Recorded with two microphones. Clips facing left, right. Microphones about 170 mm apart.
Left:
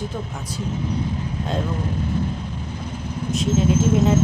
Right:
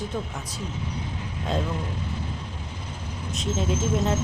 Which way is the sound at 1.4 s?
40° left (ahead or behind).